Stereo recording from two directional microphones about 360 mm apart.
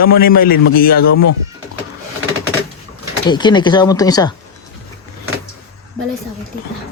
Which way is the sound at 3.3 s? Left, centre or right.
Centre.